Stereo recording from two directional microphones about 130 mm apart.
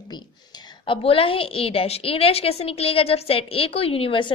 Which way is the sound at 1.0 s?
45° left (ahead or behind).